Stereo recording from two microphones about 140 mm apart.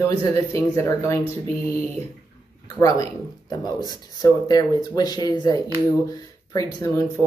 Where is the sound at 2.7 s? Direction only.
25° left (ahead or behind).